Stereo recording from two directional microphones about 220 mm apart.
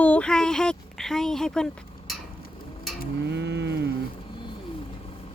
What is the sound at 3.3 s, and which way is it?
Cattle, 50° right (ahead or behind).